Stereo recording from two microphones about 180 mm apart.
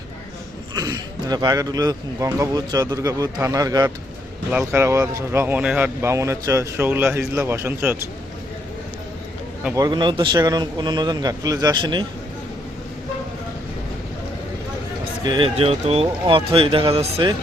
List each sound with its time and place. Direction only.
0.8 s speech: 20° right (ahead or behind)
9.7 s speech: 25° right (ahead or behind)
15.2 s speech: 25° right (ahead or behind)